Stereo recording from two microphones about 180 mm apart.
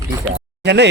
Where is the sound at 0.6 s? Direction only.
70° right (ahead or behind).